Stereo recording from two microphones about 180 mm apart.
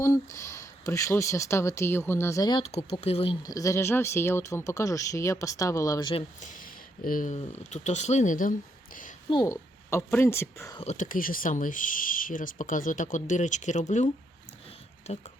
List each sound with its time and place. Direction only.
0.0 s speech: 15° left (ahead or behind)
2.7 s speech: 35° left (ahead or behind)
3.4 s speech: 20° left (ahead or behind)
6.4 s a sound: 50° left (ahead or behind)
7.3 s speech: 40° left (ahead or behind)
9.3 s speech: 20° left (ahead or behind)
10.8 s speech: 40° left (ahead or behind)